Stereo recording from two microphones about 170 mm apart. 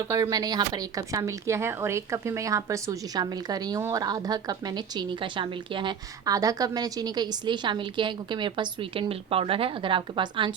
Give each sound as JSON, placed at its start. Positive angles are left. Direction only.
{"t": 0.1, "sound": "speech", "side_deg": -20}